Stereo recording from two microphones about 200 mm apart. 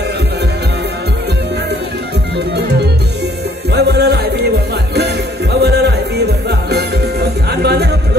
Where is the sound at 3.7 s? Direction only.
55° right (ahead or behind).